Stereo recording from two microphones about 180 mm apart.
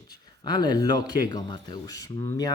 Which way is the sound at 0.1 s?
25° left (ahead or behind).